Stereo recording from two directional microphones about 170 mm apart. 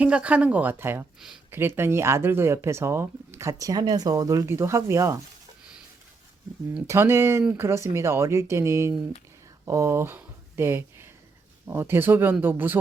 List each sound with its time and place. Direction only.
0.0 s speech: 5° right (ahead or behind)
1.2 s a sound: 5° right (ahead or behind)
1.5 s speech: 15° right (ahead or behind)
6.8 s speech: 15° right (ahead or behind)